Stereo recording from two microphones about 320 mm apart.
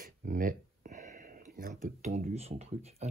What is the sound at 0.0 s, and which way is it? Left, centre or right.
Speech, right.